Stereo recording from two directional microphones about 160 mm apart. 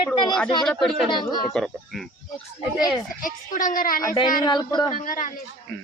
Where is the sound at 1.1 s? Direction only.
25° left (ahead or behind).